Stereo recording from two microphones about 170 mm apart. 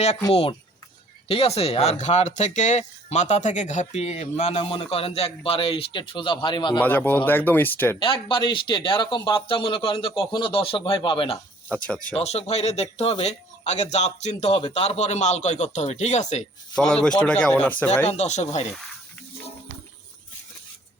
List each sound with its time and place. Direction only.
1.3 s speech: 35° left (ahead or behind)
6.7 s speech: 10° left (ahead or behind)
7.9 s speech: 30° left (ahead or behind)
16.9 s speech: 5° left (ahead or behind)
18.1 s speech: 40° left (ahead or behind)